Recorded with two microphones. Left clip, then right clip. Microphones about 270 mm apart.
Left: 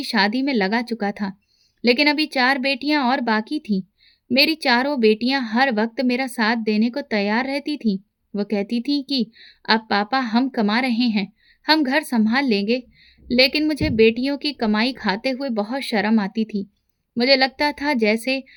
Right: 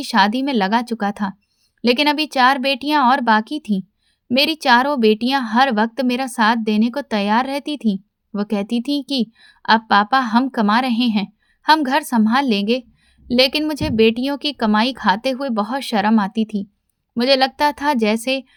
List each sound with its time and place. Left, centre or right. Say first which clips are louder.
0.0 s a woman's voice: right 4 dB; right